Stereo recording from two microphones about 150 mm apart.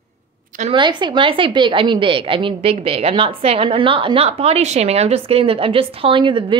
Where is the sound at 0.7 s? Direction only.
30° right (ahead or behind).